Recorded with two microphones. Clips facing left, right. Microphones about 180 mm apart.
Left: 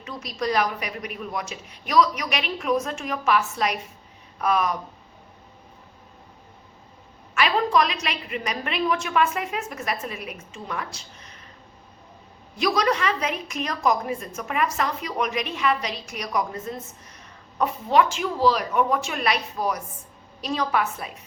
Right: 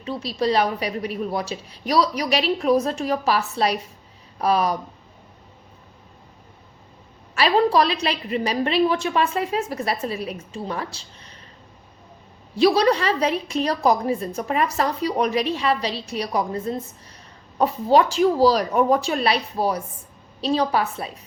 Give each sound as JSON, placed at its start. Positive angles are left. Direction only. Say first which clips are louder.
{"t": 0.0, "sound": "a woman's voice", "louder": "right 5 dB", "side_deg": -30}
{"t": 7.3, "sound": "a woman's voice", "louder": "right 3 dB", "side_deg": -35}
{"t": 12.5, "sound": "a woman's voice", "louder": "right 6 dB", "side_deg": -30}